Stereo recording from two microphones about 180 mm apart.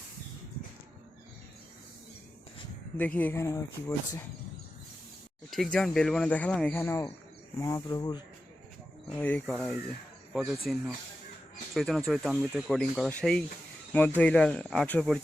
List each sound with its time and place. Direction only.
3.0 s speech: 10° left (ahead or behind)
5.5 s speech: centre (ahead or behind); by 8.2 s 20° left (ahead or behind)
9.1 s speech: 5° left (ahead or behind)
11.7 s speech: centre (ahead or behind)